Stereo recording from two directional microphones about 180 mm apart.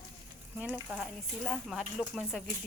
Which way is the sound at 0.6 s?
5° right (ahead or behind).